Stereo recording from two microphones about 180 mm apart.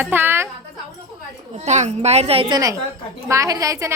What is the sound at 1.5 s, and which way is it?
A child's voice, 40° right (ahead or behind).